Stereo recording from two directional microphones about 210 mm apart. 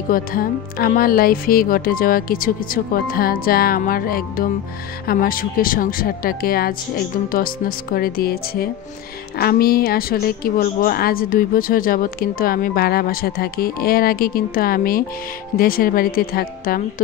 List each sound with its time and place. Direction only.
0.1 s a woman's voice: 45° left (ahead or behind)